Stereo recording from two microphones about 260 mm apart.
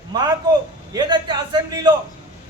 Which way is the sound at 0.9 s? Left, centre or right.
Centre.